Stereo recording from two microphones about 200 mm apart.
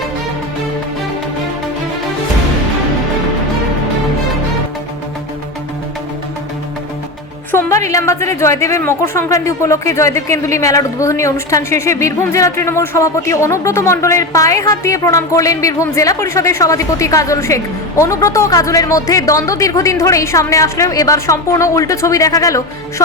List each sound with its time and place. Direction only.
7.5 s a woman's voice: 15° left (ahead or behind)